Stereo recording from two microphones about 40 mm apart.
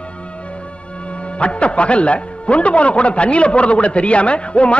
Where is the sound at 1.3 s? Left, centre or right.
Left.